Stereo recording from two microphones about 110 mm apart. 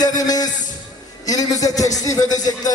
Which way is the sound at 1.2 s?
35° left (ahead or behind).